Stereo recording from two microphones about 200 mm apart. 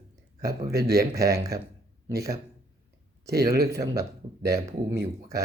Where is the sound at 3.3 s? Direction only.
50° right (ahead or behind).